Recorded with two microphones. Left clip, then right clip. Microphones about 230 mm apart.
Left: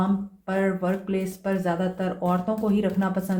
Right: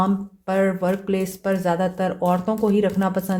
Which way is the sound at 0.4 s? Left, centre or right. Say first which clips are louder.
Right 5 dB; right.